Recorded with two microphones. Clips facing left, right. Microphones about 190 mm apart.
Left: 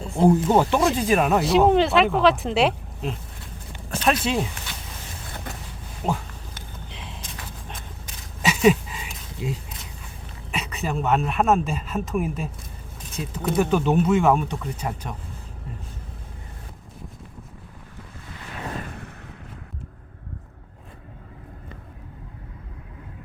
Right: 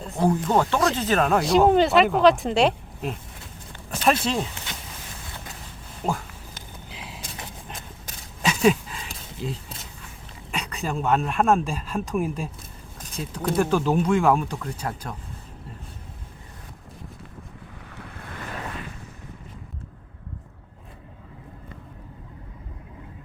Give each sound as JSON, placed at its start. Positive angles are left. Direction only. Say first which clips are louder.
{"t": 0.2, "sound": "speech", "louder": "left 4 dB", "side_deg": 15}
{"t": 3.9, "sound": "speech", "louder": "even", "side_deg": 0}
{"t": 6.0, "sound": "speech", "louder": "left 1 dB", "side_deg": 0}
{"t": 6.9, "sound": "a sound", "louder": "right 1 dB", "side_deg": -5}
{"t": 8.4, "sound": "a sound", "louder": "left 2 dB", "side_deg": 5}
{"t": 10.5, "sound": "speech", "louder": "left 1 dB", "side_deg": 5}
{"t": 17.9, "sound": "waves", "louder": "right 3 dB", "side_deg": -60}